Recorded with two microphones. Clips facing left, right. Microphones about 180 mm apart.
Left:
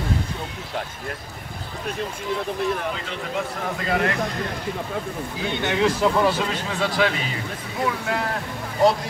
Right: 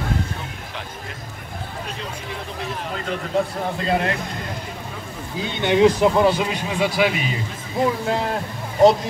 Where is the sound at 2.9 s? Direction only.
45° right (ahead or behind).